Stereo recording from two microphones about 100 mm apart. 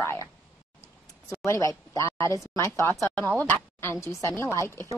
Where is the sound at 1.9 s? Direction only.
30° left (ahead or behind).